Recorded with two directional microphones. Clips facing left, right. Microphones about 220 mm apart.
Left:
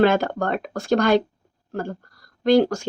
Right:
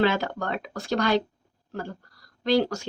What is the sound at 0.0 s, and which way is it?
Speech, 50° left (ahead or behind).